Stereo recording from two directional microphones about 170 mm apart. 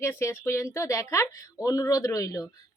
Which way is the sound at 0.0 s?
15° left (ahead or behind).